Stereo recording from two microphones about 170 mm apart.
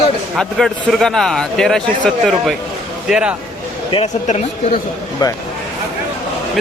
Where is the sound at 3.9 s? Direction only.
40° left (ahead or behind).